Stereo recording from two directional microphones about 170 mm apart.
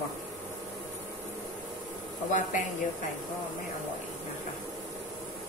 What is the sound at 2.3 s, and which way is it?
Speech, 50° left (ahead or behind).